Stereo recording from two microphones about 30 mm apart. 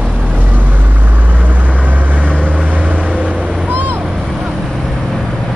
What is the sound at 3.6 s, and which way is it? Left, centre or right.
Vehicle, right.